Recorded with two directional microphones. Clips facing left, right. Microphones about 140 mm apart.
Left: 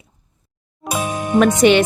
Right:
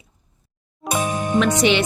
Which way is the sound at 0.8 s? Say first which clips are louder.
Even; 10° left (ahead or behind).